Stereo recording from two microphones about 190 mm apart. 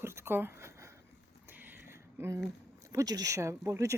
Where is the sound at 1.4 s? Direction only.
10° right (ahead or behind).